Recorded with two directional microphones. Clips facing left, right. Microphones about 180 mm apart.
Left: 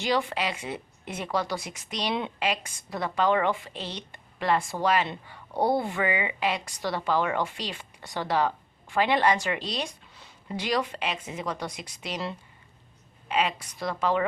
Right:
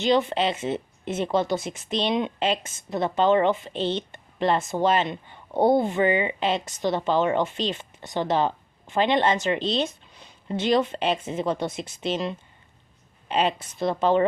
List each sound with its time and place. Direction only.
0.0 s speech: 20° right (ahead or behind)